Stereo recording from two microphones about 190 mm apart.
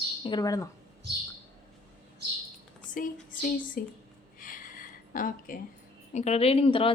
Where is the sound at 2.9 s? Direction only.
45° left (ahead or behind).